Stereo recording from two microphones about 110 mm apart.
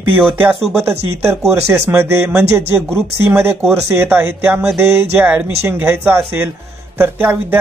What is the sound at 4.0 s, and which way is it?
Speech, 20° right (ahead or behind).